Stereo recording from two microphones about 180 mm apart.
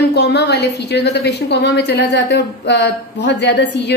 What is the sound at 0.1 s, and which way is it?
A woman's voice, 70° left (ahead or behind).